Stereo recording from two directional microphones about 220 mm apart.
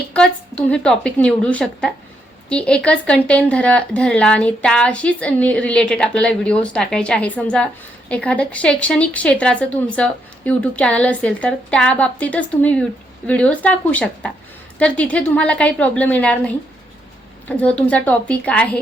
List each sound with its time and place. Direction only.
0.1 s speech: 5° left (ahead or behind)
17.6 s speech: 5° left (ahead or behind)